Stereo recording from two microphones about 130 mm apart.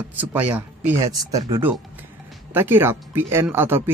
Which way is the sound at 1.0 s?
25° right (ahead or behind).